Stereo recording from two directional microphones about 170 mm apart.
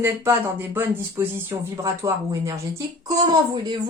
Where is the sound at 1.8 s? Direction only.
15° right (ahead or behind).